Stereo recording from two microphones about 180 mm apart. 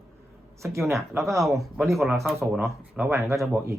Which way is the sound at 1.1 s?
15° right (ahead or behind).